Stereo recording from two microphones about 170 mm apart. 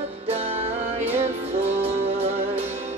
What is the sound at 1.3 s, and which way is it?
Music, 40° right (ahead or behind).